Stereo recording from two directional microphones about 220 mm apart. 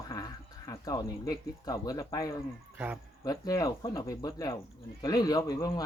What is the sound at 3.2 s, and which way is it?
Speech, 15° left (ahead or behind).